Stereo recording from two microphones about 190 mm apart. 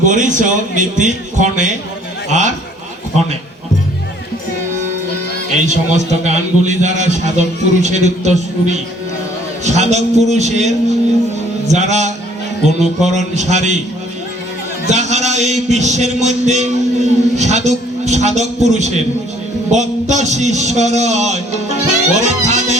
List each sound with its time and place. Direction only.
0.0 s a man's voice: 40° right (ahead or behind)
5.6 s a man's voice: 35° right (ahead or behind)
9.6 s a man's voice: 35° right (ahead or behind)
11.7 s a man's voice: 35° right (ahead or behind)
14.8 s a man's voice: 35° right (ahead or behind)